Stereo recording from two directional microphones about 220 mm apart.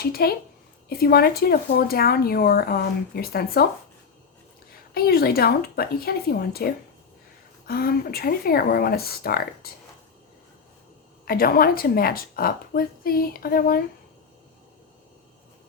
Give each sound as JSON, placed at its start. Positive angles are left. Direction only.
{"t": 0.0, "sound": "speech", "side_deg": 45}
{"t": 4.9, "sound": "speech", "side_deg": 45}
{"t": 7.7, "sound": "speech", "side_deg": 45}
{"t": 11.3, "sound": "speech", "side_deg": 40}